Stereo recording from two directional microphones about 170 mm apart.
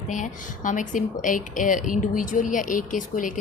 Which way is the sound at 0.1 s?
50° left (ahead or behind).